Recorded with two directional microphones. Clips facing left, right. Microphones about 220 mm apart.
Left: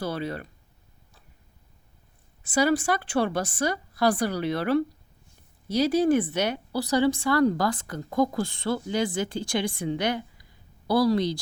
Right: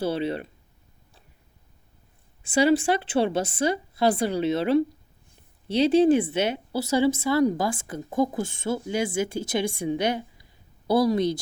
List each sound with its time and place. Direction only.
0.1 s a woman's voice: 30° right (ahead or behind)
2.6 s a woman's voice: 30° right (ahead or behind)
7.5 s a woman's voice: 5° right (ahead or behind)
9.5 s a woman's voice: 25° right (ahead or behind)
9.7 s a woman's voice: 15° right (ahead or behind)